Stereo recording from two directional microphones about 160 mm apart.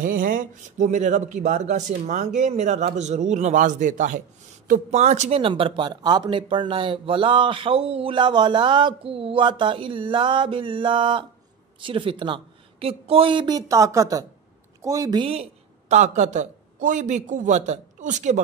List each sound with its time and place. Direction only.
0.0 s speech: 60° right (ahead or behind); by 15.4 s 35° right (ahead or behind)
15.9 s speech: 45° right (ahead or behind)